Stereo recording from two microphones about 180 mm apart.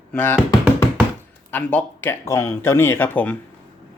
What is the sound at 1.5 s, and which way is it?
Speech, 10° left (ahead or behind).